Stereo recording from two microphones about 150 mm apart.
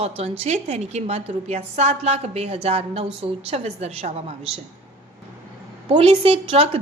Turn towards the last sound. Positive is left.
turn(degrees=-40)  # may be behind; listen again after turning